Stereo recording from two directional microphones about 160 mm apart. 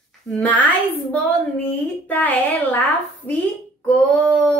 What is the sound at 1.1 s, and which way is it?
A woman's voice, 10° left (ahead or behind).